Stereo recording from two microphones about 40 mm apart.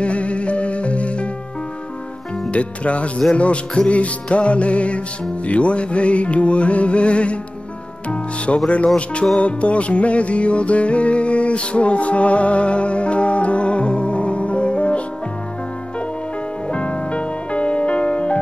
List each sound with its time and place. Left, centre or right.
0.0 s music: left
2.5 s music: left
8.6 s music: left
16.7 s music: left